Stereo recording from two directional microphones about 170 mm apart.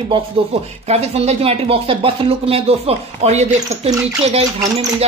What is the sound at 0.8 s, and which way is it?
A woman's voice, 40° right (ahead or behind).